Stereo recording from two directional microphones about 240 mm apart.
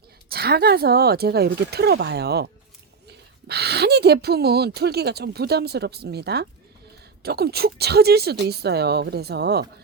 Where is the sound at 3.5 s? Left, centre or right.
Right.